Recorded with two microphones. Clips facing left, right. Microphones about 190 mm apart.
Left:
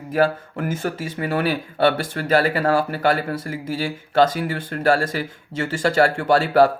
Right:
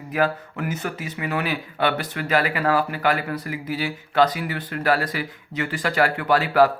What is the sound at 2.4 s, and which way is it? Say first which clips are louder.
Speech: left 3 dB; 30° left (ahead or behind).